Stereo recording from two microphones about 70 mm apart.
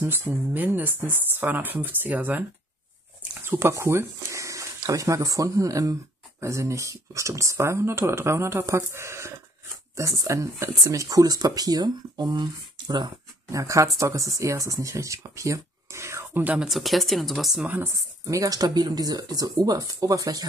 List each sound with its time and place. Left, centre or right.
0.0 s speech: right
3.4 s speech: right
13.5 s speech: right
16.5 s speech: centre
17.6 s speech: right
18.2 s speech: right
19.6 s speech: right